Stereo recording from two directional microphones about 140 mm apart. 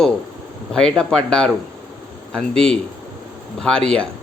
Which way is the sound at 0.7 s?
5° left (ahead or behind).